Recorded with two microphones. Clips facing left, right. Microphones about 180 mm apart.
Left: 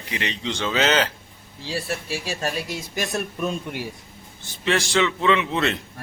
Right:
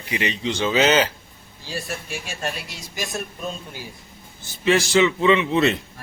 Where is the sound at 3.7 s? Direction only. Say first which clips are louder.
Left 7 dB; 70° left (ahead or behind).